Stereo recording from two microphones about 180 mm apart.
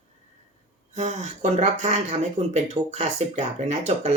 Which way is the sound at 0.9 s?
40° right (ahead or behind).